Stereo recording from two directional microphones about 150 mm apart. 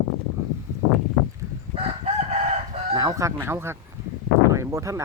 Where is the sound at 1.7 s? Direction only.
40° right (ahead or behind).